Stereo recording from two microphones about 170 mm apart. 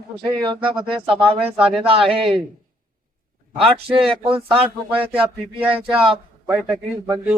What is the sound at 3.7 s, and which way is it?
Speech, 35° right (ahead or behind).